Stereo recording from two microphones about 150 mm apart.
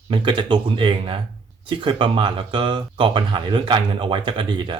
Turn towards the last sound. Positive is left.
turn(degrees=-30)  # may be behind; listen again after turning